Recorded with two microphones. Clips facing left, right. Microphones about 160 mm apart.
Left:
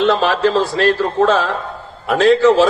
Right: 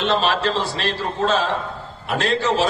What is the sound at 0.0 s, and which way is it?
A man's voice, 90° left.